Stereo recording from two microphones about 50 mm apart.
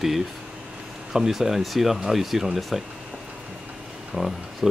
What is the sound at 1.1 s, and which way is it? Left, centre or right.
Speech, centre.